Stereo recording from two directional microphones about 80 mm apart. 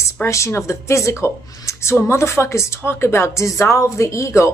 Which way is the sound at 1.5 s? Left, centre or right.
Left.